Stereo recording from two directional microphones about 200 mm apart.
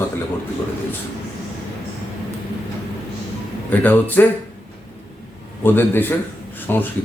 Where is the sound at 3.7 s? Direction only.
10° left (ahead or behind).